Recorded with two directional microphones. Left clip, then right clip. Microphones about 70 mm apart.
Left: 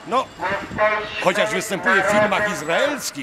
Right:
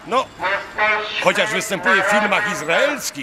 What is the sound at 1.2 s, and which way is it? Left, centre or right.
A man's voice, centre.